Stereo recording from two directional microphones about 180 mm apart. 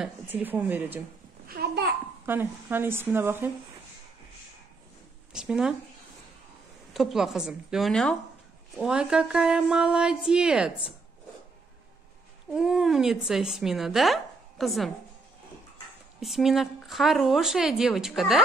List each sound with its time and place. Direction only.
0.0 s a woman's voice: 10° right (ahead or behind)
1.5 s babbling: 65° right (ahead or behind)
2.2 s a woman's voice: 10° right (ahead or behind)
5.3 s speech: 5° right (ahead or behind)
6.9 s speech: centre (ahead or behind)
12.5 s speech: 5° right (ahead or behind)
16.2 s speech: centre (ahead or behind)